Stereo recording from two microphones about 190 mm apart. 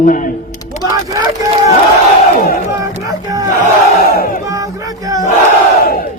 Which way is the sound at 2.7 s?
20° right (ahead or behind).